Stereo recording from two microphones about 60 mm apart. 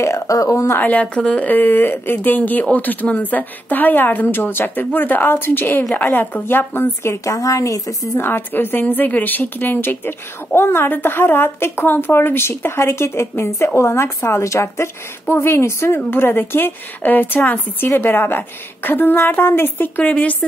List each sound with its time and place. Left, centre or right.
0.0 s speech: left
0.3 s speech: left
0.7 s speech: left
1.5 s speech: left
7.2 s a woman's voice: left
8.2 s speech: left